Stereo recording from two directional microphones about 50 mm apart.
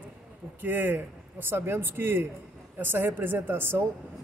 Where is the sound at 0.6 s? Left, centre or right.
Right.